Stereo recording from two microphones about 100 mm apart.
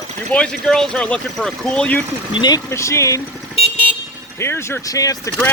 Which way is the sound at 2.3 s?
50° left (ahead or behind).